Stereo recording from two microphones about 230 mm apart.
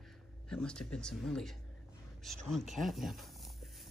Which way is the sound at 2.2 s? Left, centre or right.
Centre.